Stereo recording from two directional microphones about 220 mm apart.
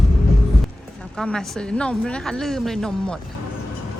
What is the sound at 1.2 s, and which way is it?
A woman's voice, 5° left (ahead or behind).